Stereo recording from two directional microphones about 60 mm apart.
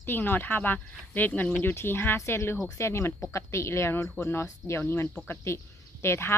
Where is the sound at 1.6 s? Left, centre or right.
Left.